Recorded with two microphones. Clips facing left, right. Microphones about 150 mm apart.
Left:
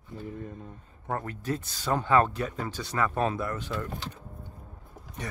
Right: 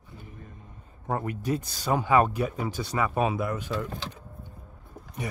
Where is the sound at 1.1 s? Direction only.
15° right (ahead or behind).